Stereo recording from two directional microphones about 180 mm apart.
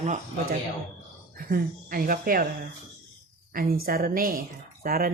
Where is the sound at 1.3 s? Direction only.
50° right (ahead or behind).